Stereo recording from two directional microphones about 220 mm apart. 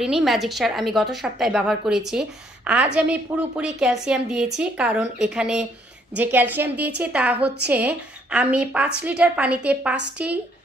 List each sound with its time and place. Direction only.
0.0 s a woman's voice: centre (ahead or behind)
7.4 s a woman's voice: 50° right (ahead or behind)
7.7 s a woman's voice: 5° right (ahead or behind)